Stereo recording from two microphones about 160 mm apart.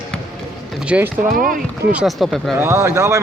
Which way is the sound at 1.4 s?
60° right (ahead or behind).